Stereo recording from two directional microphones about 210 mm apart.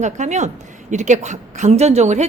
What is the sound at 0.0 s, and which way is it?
A woman's voice, 35° right (ahead or behind).